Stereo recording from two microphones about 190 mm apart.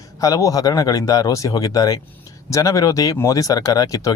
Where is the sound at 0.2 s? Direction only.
20° left (ahead or behind).